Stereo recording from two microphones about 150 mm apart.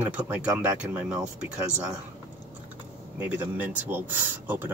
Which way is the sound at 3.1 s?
10° right (ahead or behind).